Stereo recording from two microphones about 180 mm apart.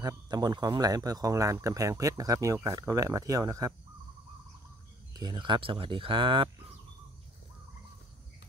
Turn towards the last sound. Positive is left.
turn(degrees=-30)  # may be behind; listen again after turning